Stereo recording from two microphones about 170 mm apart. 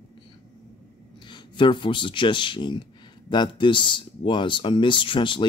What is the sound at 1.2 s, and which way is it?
Speech, 25° left (ahead or behind).